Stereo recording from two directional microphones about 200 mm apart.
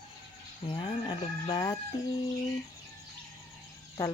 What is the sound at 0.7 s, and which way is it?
Speech, 25° left (ahead or behind).